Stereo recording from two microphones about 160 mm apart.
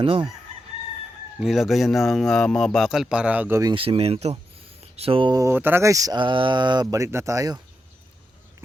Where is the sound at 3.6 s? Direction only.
30° right (ahead or behind).